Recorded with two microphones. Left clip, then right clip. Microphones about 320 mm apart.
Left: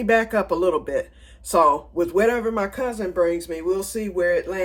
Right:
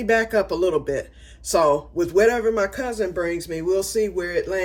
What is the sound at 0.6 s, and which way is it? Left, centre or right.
Speech, centre.